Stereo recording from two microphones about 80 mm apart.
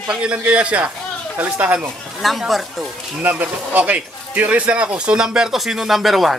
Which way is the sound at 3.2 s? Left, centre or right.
Centre.